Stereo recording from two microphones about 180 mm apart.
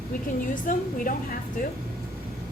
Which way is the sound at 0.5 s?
50° left (ahead or behind).